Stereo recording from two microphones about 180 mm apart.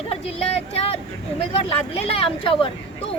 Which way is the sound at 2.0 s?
30° left (ahead or behind).